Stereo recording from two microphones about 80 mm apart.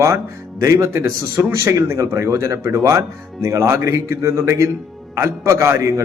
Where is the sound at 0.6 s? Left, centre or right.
Right.